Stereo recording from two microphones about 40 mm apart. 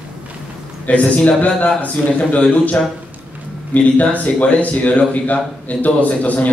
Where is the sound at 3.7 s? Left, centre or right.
Left.